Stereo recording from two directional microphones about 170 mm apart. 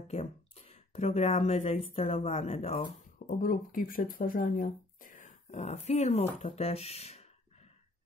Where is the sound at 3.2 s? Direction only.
55° left (ahead or behind).